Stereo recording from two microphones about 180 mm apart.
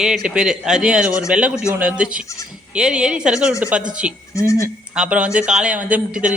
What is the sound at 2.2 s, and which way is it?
Speech, 15° left (ahead or behind).